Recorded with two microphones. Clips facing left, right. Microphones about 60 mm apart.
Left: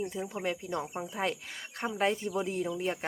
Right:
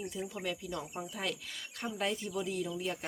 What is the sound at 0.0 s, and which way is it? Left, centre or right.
Speech, left.